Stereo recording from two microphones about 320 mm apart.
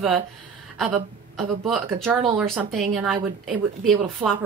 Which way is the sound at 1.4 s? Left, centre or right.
Centre.